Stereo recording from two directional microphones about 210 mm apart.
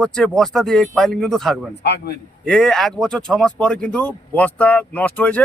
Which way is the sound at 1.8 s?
50° left (ahead or behind).